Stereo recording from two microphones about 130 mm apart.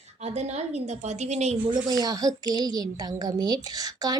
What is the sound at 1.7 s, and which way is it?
A woman's voice, 30° right (ahead or behind).